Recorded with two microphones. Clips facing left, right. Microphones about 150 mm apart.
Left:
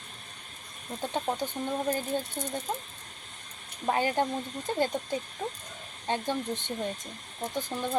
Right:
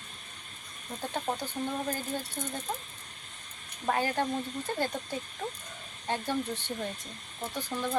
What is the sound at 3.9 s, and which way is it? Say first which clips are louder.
Speech: left 2 dB; 20° left (ahead or behind).